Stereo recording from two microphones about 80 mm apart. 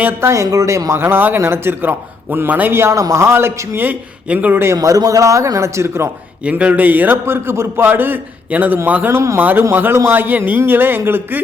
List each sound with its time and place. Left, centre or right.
0.2 s speech: right
2.7 s speech: right
4.6 s speech: right
6.4 s a man's voice: centre
9.1 s speech: right
9.4 s a man's voice: right